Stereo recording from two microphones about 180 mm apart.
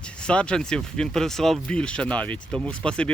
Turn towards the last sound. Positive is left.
turn(degrees=5)  # may be behind; listen again after turning